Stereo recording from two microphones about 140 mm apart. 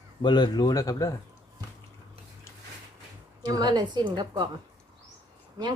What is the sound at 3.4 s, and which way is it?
Speech, 30° right (ahead or behind).